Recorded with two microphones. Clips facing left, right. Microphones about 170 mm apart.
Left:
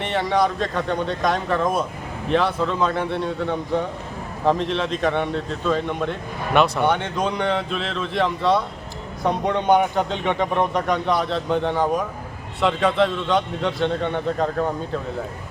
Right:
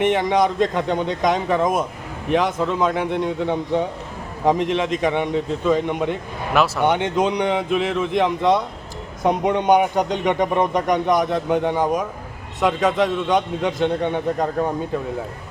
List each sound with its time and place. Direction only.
0.0 s speech: 15° right (ahead or behind)
6.5 s speech: centre (ahead or behind)
6.8 s speech: 20° right (ahead or behind)